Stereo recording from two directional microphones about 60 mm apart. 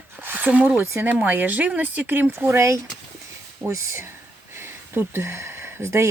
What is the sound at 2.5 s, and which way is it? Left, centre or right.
Speech, right.